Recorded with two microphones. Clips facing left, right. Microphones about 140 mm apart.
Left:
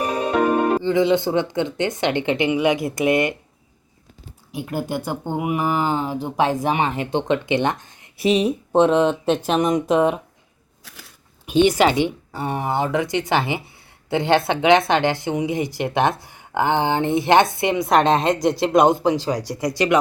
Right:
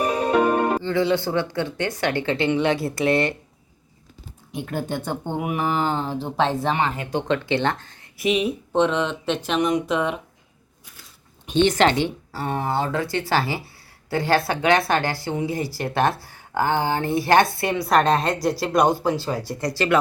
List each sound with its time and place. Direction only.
0.8 s speech: 15° left (ahead or behind)
4.5 s speech: 10° left (ahead or behind)
8.2 s speech: 35° left (ahead or behind)
10.9 s a sound: 90° left
11.4 s a woman's voice: 10° left (ahead or behind)